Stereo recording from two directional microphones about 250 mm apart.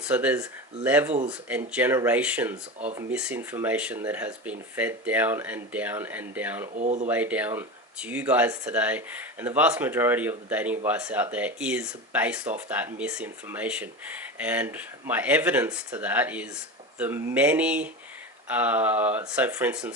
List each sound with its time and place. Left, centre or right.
0.0 s speech: centre
0.9 s a sound: centre
1.3 s speech: centre
6.7 s speech: right
7.1 s speech: centre
17.0 s a sound: centre
18.4 s speech: centre